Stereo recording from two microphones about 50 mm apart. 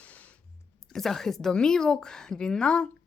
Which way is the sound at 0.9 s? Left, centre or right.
Centre.